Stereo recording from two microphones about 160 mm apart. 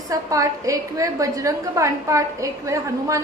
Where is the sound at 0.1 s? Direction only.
20° right (ahead or behind).